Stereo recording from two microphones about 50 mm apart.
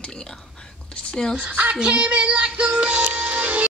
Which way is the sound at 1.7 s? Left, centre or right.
Right.